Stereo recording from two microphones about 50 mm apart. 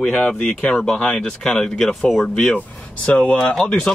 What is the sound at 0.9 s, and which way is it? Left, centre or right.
Speech, left.